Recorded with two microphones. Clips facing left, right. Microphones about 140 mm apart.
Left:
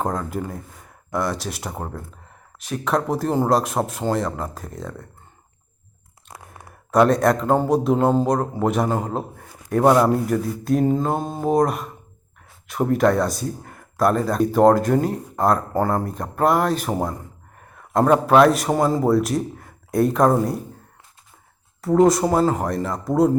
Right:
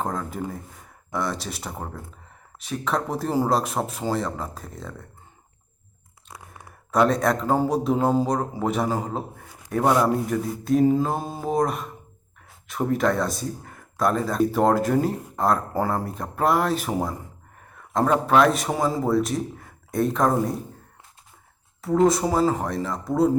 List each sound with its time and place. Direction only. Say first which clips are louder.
0.0 s speech: left 3 dB; centre (ahead or behind)
6.9 s speech: left 4 dB; centre (ahead or behind)
9.8 s speech: left 5 dB; 20° left (ahead or behind)
10.2 s speech: left 3 dB; centre (ahead or behind)
18.1 s speech: left 4 dB; 5° left (ahead or behind)
22.0 s speech: left 2 dB; centre (ahead or behind)